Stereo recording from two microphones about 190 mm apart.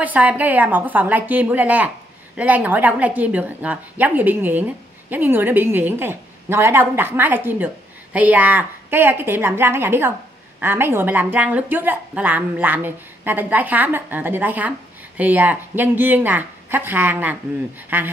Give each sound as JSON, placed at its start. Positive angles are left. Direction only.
{"t": 0.0, "sound": "a woman's voice", "side_deg": -10}